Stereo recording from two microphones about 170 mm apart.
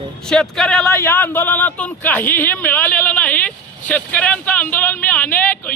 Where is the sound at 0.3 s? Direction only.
Centre (ahead or behind).